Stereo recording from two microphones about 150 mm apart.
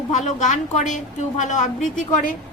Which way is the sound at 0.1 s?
55° left (ahead or behind).